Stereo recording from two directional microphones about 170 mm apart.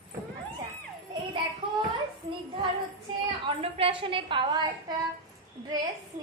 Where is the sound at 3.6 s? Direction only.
35° right (ahead or behind).